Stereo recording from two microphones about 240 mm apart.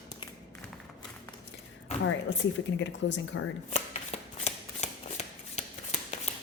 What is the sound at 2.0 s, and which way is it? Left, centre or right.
A woman's voice, left.